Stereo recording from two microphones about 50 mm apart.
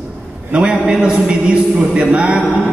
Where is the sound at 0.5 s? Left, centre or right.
Right.